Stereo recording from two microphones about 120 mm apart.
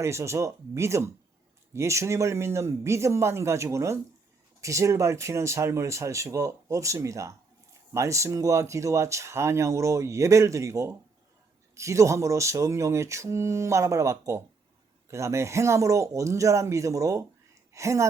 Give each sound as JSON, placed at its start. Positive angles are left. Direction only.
{"t": 0.0, "sound": "speech", "side_deg": -25}